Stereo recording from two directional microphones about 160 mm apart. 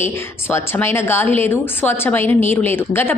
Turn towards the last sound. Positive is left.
turn(degrees=15)  # may be behind; listen again after turning